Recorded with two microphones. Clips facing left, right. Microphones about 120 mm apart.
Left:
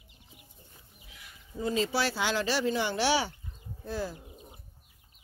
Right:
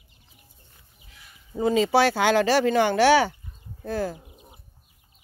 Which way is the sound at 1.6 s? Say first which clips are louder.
Right 9 dB; 90° right.